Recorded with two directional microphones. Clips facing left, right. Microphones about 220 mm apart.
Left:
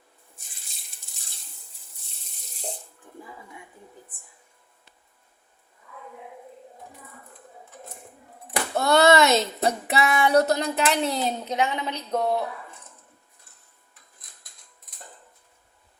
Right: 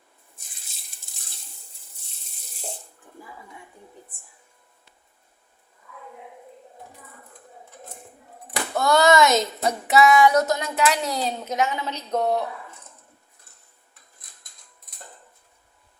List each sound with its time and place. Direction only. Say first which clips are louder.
8.7 s child singing: even; 25° left (ahead or behind)
10.1 s a woman's voice: right 2 dB; 30° left (ahead or behind); by 12.2 s 15° left (ahead or behind)